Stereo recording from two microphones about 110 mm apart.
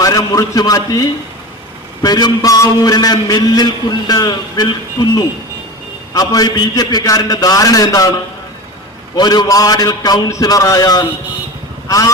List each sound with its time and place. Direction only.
0.0 s a man's voice: 35° left (ahead or behind)
9.1 s a man's voice: 40° left (ahead or behind)